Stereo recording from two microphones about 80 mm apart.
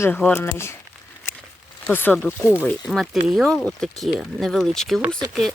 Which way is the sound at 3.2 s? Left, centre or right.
Centre.